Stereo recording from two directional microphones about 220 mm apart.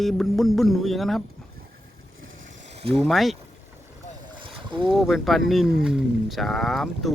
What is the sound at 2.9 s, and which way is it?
Speech, centre (ahead or behind).